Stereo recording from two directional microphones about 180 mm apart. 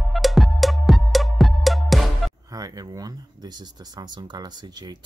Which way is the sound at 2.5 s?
20° right (ahead or behind).